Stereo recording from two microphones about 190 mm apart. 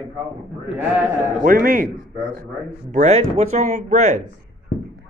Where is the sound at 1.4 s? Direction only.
50° right (ahead or behind).